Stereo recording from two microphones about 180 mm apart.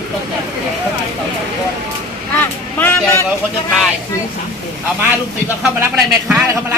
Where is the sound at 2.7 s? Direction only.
15° left (ahead or behind).